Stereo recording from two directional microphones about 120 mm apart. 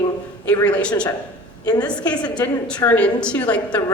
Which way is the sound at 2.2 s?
35° left (ahead or behind).